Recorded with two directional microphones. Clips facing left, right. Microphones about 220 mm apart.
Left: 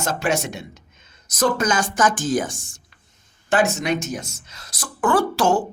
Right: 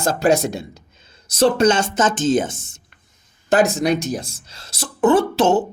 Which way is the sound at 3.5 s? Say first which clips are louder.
Right 4 dB; 35° right (ahead or behind).